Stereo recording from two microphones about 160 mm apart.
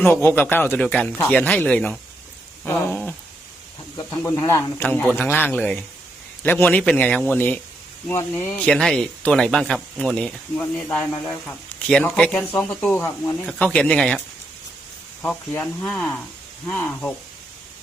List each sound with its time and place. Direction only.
0.0 s speech: 15° left (ahead or behind)
4.2 s speech: 20° left (ahead or behind)
13.4 s speech: centre (ahead or behind)
15.2 s speech: 15° left (ahead or behind)